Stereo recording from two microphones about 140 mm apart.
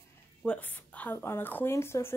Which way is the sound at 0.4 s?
10° left (ahead or behind).